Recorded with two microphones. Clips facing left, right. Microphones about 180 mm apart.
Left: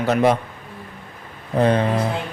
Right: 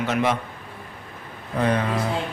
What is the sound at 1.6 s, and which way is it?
Speech, 30° left (ahead or behind).